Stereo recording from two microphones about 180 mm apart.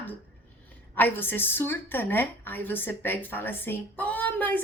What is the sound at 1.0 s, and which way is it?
A woman's voice, 10° left (ahead or behind).